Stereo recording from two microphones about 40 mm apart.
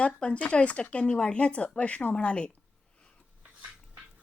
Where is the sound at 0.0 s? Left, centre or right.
Left.